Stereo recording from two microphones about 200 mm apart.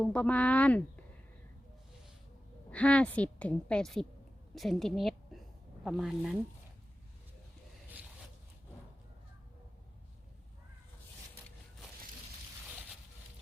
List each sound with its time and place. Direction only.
0.0 s speech: 5° left (ahead or behind)
2.6 s a woman's voice: 5° left (ahead or behind)